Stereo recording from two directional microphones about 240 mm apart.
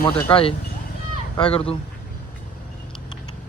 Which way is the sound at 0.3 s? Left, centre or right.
Left.